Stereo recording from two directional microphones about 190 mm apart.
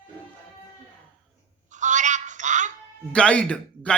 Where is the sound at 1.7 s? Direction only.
40° right (ahead or behind).